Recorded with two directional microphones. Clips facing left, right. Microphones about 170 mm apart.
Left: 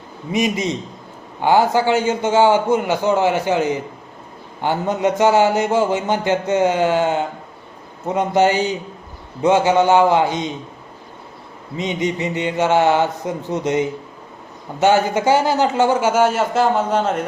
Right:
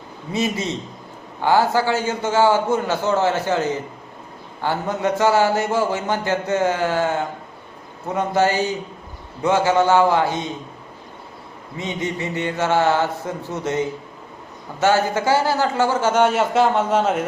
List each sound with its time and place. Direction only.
0.3 s a man's voice: 15° left (ahead or behind)
11.8 s a man's voice: 20° left (ahead or behind); by 17.2 s centre (ahead or behind)